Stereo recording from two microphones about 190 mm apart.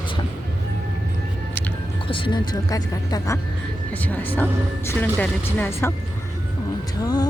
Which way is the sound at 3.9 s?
10° left (ahead or behind).